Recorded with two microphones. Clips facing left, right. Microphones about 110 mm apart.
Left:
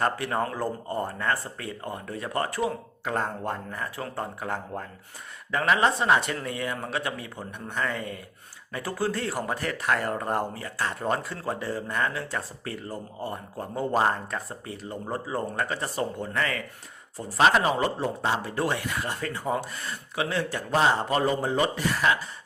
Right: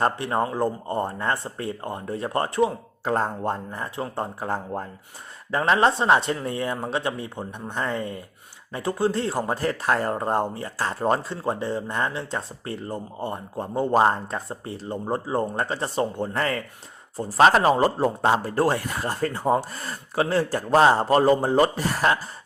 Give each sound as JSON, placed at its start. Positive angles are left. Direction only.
{"t": 0.0, "sound": "speech", "side_deg": -25}